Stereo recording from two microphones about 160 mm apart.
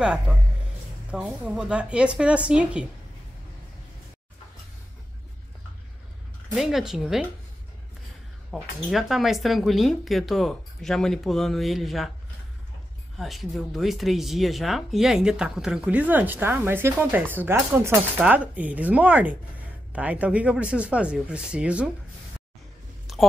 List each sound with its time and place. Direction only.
0.0 s speech: 5° right (ahead or behind)
6.5 s speech: centre (ahead or behind)
8.5 s speech: centre (ahead or behind)
13.2 s speech: centre (ahead or behind)